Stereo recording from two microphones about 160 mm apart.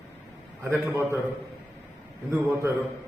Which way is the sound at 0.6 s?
10° right (ahead or behind).